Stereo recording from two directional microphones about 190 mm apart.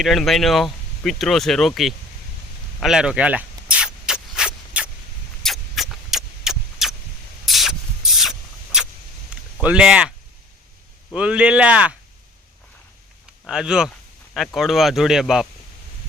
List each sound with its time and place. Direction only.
0.0 s speech: centre (ahead or behind)
2.8 s a sound: 5° right (ahead or behind)
5.4 s vehicle: centre (ahead or behind)
7.4 s rodents: centre (ahead or behind)
9.3 s a sound: 5° right (ahead or behind)
11.1 s speech: 5° right (ahead or behind)
13.5 s speech: 5° right (ahead or behind)